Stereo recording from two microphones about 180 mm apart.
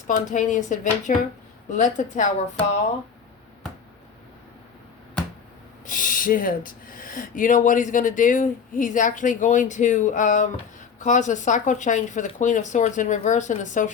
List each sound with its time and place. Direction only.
0.1 s speech: 45° left (ahead or behind)
5.8 s speech: 50° left (ahead or behind)